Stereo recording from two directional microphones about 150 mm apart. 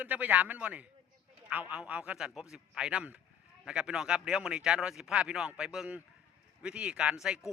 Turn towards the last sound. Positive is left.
turn(degrees=-5)  # may be behind; listen again after turning